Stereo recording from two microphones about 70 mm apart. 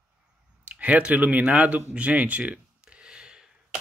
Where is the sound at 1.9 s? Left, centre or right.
Centre.